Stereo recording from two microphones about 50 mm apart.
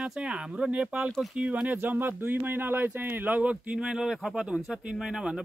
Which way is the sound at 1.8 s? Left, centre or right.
Right.